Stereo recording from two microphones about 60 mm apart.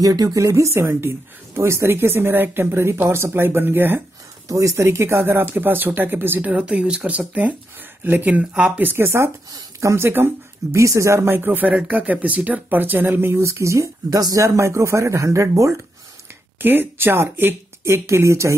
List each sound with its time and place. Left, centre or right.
0.0 s speech: right
0.5 s a woman's voice: right
4.5 s speech: right
5.5 s a woman's voice: right
6.5 s speech: right
8.8 s speech: right
9.5 s speech: right
9.9 s speech: right
10.8 s speech: right
11.7 s speech: right
16.6 s a woman's voice: right
17.8 s speech: right